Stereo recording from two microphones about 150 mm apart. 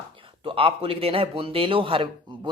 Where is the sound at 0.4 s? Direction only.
40° right (ahead or behind).